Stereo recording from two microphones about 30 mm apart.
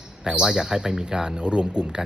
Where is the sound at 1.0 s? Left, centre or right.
Right.